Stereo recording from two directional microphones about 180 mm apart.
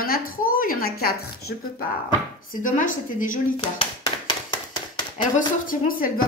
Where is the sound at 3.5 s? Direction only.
30° left (ahead or behind).